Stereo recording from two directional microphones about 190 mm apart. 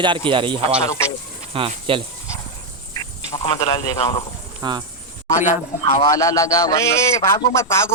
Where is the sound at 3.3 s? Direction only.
30° left (ahead or behind).